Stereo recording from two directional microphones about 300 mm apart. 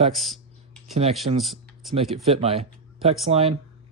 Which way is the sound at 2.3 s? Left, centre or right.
Right.